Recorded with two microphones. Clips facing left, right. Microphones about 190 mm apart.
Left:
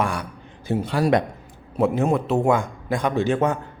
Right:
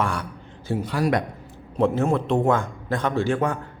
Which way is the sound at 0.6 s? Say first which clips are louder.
Left 3 dB; 25° left (ahead or behind).